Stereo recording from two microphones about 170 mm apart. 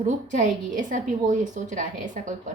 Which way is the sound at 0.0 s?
45° right (ahead or behind).